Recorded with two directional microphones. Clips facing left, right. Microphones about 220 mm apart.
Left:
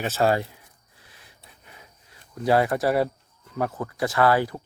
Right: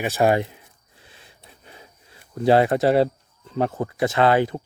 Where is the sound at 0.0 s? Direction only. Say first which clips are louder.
Right 3 dB; 15° right (ahead or behind).